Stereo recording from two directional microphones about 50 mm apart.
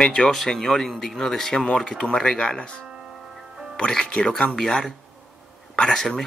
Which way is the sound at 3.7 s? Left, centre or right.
Centre.